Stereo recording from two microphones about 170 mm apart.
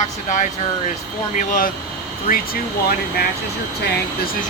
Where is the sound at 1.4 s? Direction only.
50° left (ahead or behind).